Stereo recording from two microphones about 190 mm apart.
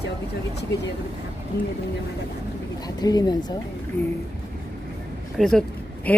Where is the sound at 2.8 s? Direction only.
20° left (ahead or behind).